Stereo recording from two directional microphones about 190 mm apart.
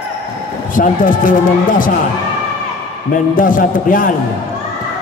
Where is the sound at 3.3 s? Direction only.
45° left (ahead or behind).